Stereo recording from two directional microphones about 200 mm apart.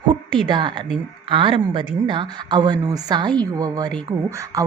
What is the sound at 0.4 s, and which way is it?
A woman's voice, 20° right (ahead or behind).